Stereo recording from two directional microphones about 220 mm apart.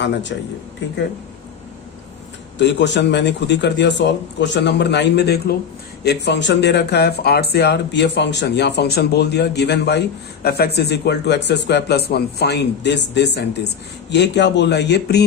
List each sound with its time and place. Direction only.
0.0 s speech: 55° left (ahead or behind)
2.6 s speech: 55° left (ahead or behind)